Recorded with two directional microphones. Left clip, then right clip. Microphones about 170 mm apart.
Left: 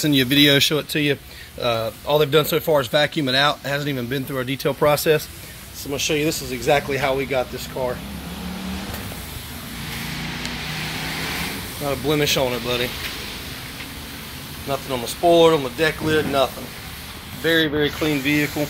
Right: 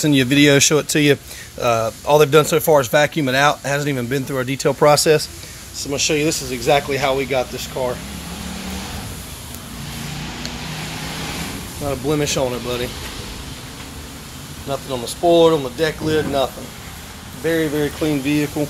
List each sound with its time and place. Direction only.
0.0 s speech: 20° right (ahead or behind)
11.8 s speech: 5° right (ahead or behind)
14.7 s speech: centre (ahead or behind); by 18.7 s 20° right (ahead or behind)